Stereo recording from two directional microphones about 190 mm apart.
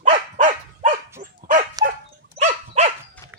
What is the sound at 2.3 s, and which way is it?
Dog, 35° right (ahead or behind).